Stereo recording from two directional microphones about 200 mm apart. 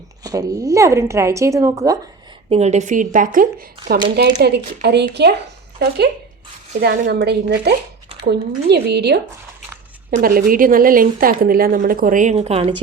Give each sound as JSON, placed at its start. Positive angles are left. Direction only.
{"t": 0.2, "sound": "speech", "side_deg": -15}
{"t": 2.5, "sound": "a woman's voice", "side_deg": -35}
{"t": 4.4, "sound": "a woman's voice", "side_deg": -55}
{"t": 6.8, "sound": "a woman's voice", "side_deg": -50}